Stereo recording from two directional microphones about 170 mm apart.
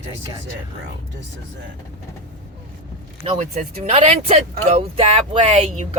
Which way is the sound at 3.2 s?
40° right (ahead or behind).